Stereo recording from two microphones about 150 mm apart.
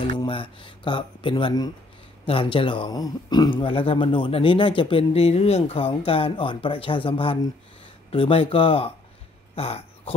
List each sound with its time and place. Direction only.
0.0 s speech: 35° left (ahead or behind)